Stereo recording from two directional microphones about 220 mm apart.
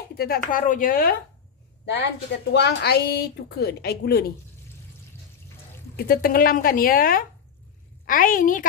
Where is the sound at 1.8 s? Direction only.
50° left (ahead or behind).